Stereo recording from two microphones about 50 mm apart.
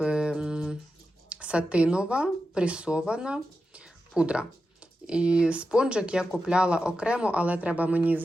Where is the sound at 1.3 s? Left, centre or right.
Right.